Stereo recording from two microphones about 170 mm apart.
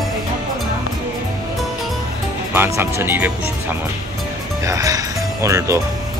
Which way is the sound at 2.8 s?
15° right (ahead or behind).